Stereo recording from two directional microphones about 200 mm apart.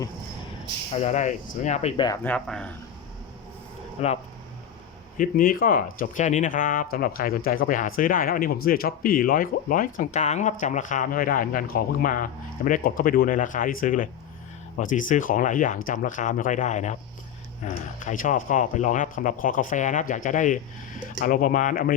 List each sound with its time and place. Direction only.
0.9 s speech: 35° left (ahead or behind)
2.2 s speech: 5° left (ahead or behind)
4.0 s speech: 30° left (ahead or behind)
5.1 s speech: 45° left (ahead or behind)